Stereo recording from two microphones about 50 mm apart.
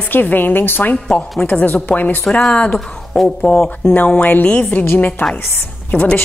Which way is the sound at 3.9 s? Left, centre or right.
Left.